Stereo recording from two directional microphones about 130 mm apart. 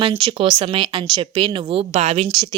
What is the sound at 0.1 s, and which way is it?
Speech, 45° right (ahead or behind).